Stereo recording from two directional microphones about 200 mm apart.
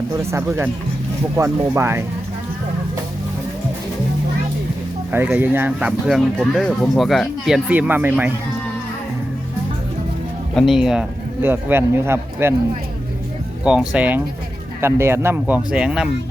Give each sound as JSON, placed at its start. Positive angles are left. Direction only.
{"t": 0.2, "sound": "speech", "side_deg": -15}
{"t": 5.1, "sound": "speech", "side_deg": -10}
{"t": 10.5, "sound": "speech", "side_deg": 0}
{"t": 13.7, "sound": "speech", "side_deg": -5}